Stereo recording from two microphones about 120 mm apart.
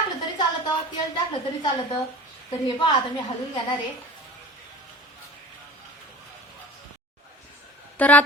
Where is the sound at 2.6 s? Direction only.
40° left (ahead or behind).